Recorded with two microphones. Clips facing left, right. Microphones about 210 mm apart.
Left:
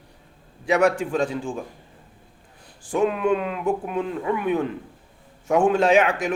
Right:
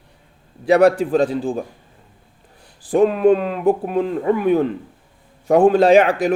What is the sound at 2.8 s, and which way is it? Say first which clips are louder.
Speech: right 7 dB; 35° right (ahead or behind).